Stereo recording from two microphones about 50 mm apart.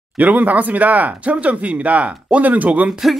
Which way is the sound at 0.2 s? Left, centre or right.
Right.